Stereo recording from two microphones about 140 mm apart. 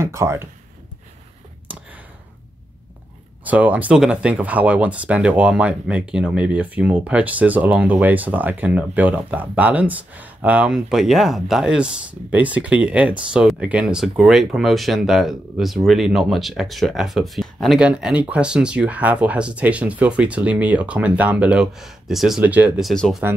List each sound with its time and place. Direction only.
0.0 s speech: 20° right (ahead or behind)
3.4 s speech: 10° right (ahead or behind)